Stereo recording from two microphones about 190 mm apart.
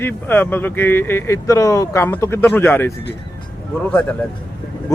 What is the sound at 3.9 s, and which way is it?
Speech, 5° left (ahead or behind).